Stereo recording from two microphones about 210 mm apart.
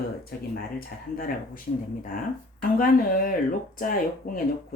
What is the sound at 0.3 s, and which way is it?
Speech, 45° left (ahead or behind).